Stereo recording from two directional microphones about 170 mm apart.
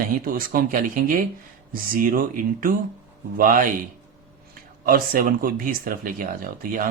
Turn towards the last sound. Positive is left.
turn(degrees=-55)  # may be behind; listen again after turning